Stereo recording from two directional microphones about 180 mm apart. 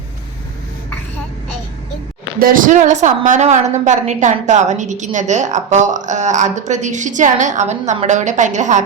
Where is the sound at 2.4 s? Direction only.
50° right (ahead or behind).